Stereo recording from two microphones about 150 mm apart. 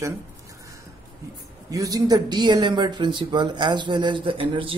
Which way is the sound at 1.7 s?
25° right (ahead or behind).